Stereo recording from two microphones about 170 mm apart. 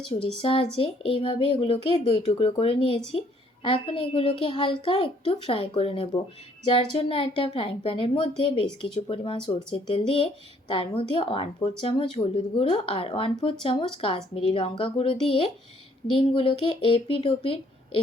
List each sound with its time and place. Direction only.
0.1 s speech: 30° left (ahead or behind)